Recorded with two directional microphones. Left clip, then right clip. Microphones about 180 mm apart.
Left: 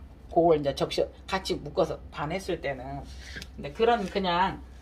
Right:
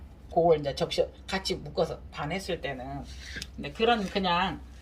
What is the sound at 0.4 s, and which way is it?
Speech, 45° left (ahead or behind).